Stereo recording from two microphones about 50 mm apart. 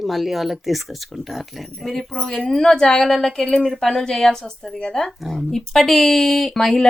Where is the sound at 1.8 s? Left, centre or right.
Centre.